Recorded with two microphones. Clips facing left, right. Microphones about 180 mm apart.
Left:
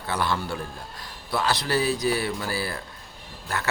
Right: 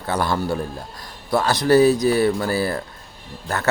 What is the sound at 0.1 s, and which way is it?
A man's voice, 40° right (ahead or behind).